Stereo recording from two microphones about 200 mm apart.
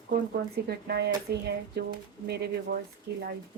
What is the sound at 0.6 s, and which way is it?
Speech, 55° right (ahead or behind).